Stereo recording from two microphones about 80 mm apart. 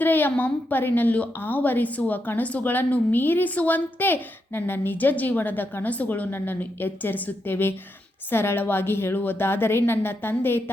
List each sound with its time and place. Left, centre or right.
0.0 s a woman's voice: left